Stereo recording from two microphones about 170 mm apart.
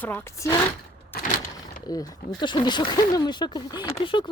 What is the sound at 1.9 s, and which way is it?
Speech, 25° left (ahead or behind).